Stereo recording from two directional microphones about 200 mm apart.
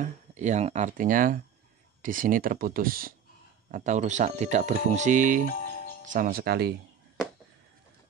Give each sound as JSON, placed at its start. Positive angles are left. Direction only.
{"t": 0.0, "sound": "speech", "side_deg": -35}